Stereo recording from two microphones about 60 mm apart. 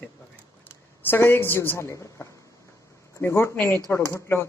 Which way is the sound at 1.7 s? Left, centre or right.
Left.